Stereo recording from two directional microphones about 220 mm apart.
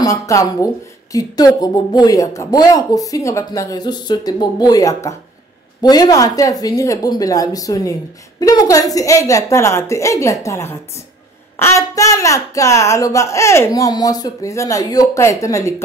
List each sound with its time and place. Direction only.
0.0 s speech: 15° left (ahead or behind)